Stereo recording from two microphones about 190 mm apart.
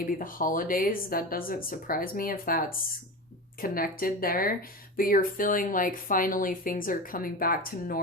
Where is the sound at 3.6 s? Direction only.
50° left (ahead or behind).